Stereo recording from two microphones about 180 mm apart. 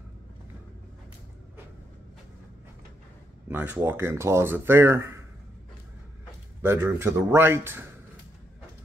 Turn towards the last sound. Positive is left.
turn(degrees=-10)  # may be behind; listen again after turning